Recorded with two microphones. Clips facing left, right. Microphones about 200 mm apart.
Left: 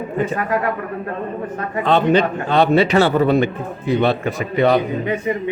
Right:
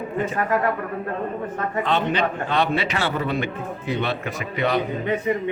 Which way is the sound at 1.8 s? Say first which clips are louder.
Left 8 dB; 40° left (ahead or behind).